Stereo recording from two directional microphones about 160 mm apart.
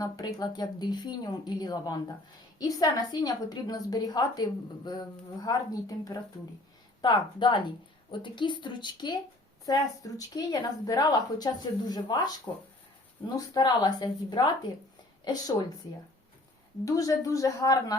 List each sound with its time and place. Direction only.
0.0 s speech: 25° left (ahead or behind)
7.0 s a woman's voice: 30° left (ahead or behind)
16.8 s speech: 20° left (ahead or behind)